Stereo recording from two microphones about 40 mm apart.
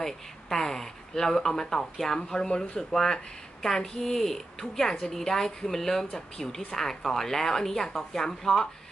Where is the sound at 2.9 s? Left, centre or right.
Centre.